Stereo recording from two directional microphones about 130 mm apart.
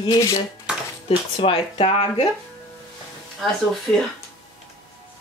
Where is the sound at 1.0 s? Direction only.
45° left (ahead or behind).